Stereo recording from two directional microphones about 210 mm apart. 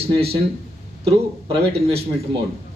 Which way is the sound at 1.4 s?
25° right (ahead or behind).